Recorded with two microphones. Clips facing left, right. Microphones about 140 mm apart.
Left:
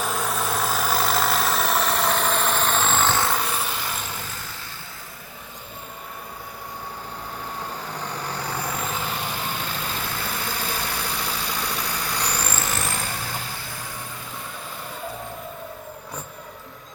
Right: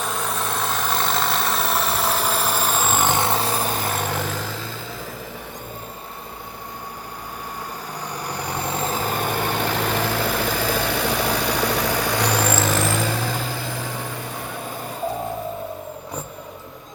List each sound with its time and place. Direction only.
0.0 s vehicle: centre (ahead or behind); by 3.4 s 20° right (ahead or behind)
3.4 s vehicle: 40° right (ahead or behind); by 4.5 s 90° right
8.2 s vehicle: 15° right (ahead or behind); by 13.2 s 90° right